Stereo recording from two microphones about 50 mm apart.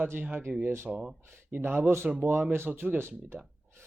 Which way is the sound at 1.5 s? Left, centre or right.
Right.